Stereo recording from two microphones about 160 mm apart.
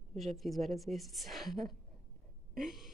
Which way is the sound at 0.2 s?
Centre (ahead or behind).